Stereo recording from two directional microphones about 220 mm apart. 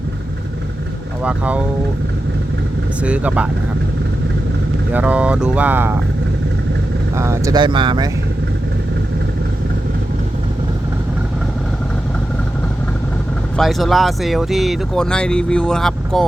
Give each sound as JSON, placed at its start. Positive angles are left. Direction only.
{"t": 1.2, "sound": "speech", "side_deg": -5}
{"t": 3.0, "sound": "speech", "side_deg": -5}
{"t": 4.9, "sound": "speech", "side_deg": -5}
{"t": 7.2, "sound": "speech", "side_deg": -15}
{"t": 13.6, "sound": "speech", "side_deg": 0}